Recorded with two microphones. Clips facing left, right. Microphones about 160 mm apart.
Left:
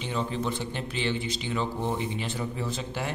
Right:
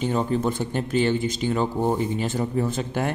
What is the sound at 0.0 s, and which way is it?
Speech, 45° right (ahead or behind).